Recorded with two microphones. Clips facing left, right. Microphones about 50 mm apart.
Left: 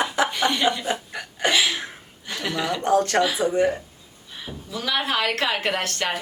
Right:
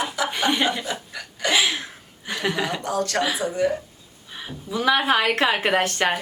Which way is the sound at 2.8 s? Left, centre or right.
Left.